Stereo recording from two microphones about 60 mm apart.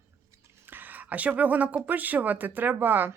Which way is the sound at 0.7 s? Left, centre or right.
Right.